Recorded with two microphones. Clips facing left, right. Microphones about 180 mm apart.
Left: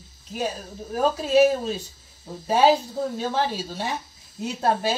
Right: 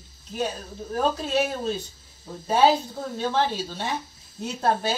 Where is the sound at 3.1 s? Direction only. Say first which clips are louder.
Right 4 dB; 10° left (ahead or behind).